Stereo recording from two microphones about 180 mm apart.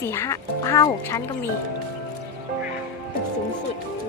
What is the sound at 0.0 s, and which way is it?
Speech, 15° left (ahead or behind).